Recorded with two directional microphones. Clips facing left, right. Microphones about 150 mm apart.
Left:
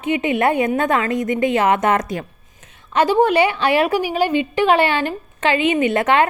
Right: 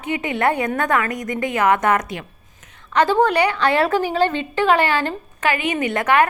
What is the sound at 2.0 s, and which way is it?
Speech, 40° left (ahead or behind).